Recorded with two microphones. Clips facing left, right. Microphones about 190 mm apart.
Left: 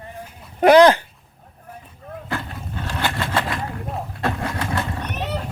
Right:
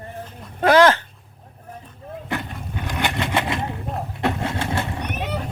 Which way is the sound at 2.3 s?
15° right (ahead or behind).